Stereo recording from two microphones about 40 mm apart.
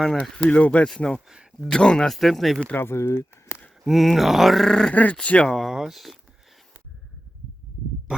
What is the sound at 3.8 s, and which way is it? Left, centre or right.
Speech, centre.